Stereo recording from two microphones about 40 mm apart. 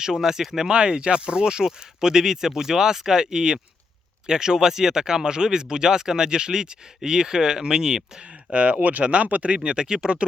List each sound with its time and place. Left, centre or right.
0.0 s speech: centre
0.7 s speech: right
8.2 s speech: right
9.6 s speech: centre